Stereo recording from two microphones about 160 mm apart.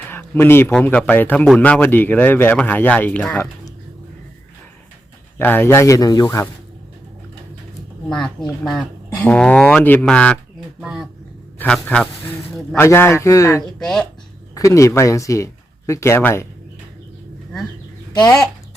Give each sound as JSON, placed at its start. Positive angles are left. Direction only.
{"t": 0.1, "sound": "a sound", "side_deg": 15}
{"t": 0.7, "sound": "speech", "side_deg": 5}
{"t": 5.4, "sound": "speech", "side_deg": 10}
{"t": 8.1, "sound": "speech", "side_deg": 5}
{"t": 11.5, "sound": "speech", "side_deg": 10}
{"t": 13.7, "sound": "speech", "side_deg": 5}
{"t": 14.5, "sound": "speech", "side_deg": 20}
{"t": 18.1, "sound": "speech", "side_deg": 25}